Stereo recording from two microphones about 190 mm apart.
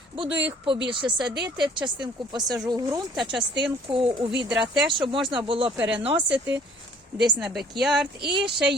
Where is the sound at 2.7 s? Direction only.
20° right (ahead or behind).